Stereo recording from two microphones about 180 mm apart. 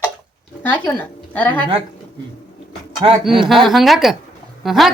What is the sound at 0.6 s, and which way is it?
Speech, 10° left (ahead or behind).